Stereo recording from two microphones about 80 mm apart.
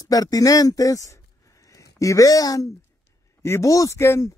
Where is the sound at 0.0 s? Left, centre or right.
Left.